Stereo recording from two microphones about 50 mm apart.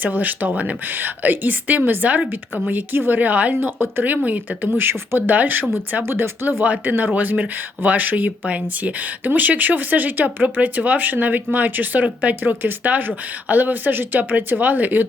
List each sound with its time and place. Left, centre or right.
0.0 s speech: right
0.9 s speech: right
3.6 s speech: right
4.2 s speech: right
4.8 s speech: right
6.1 s speech: right